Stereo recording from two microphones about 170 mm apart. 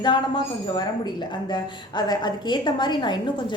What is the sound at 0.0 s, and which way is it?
A woman's voice, 25° left (ahead or behind).